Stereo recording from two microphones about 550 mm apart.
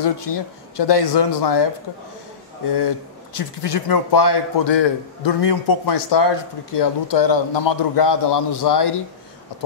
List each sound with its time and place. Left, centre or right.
0.0 s a man's voice: left
3.3 s a man's voice: left